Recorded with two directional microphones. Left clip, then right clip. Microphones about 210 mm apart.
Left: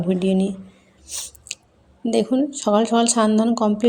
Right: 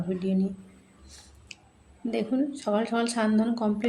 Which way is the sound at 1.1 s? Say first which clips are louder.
Left 16 dB; 30° left (ahead or behind).